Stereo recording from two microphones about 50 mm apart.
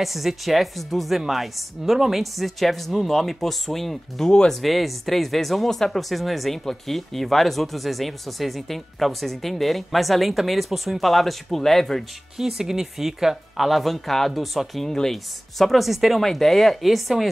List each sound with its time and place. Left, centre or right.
0.0 s speech: centre
4.3 s speech: centre
4.6 s speech: centre
12.4 s speech: centre